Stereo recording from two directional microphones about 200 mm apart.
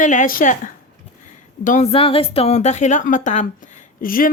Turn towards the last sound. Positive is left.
turn(degrees=45)  # may be behind; listen again after turning